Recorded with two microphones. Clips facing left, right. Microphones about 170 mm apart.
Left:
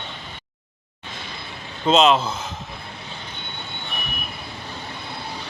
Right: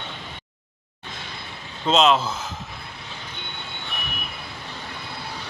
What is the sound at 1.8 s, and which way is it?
Speech, centre (ahead or behind).